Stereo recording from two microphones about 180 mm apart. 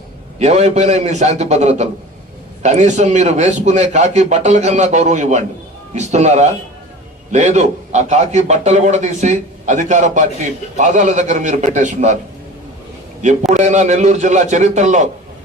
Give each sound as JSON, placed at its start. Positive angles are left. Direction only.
{"t": 0.3, "sound": "a man's voice", "side_deg": -40}
{"t": 13.5, "sound": "a man's voice", "side_deg": -40}